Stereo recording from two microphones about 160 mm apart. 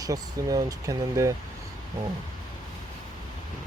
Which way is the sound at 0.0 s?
20° right (ahead or behind).